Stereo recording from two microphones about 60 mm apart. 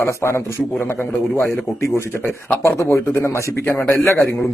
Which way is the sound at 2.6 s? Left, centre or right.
Left.